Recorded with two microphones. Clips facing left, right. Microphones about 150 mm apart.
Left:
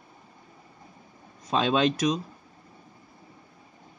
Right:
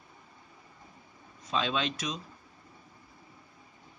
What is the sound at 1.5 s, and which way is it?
Speech, 45° left (ahead or behind).